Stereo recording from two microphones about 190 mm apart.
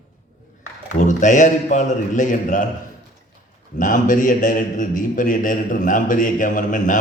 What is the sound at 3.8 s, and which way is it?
A man's voice, 45° left (ahead or behind).